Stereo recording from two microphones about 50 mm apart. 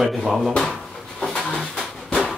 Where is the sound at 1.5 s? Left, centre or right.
Centre.